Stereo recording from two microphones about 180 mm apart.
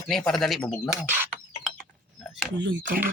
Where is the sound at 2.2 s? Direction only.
Centre (ahead or behind).